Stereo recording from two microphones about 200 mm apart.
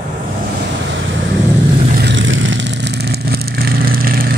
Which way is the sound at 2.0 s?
65° right (ahead or behind).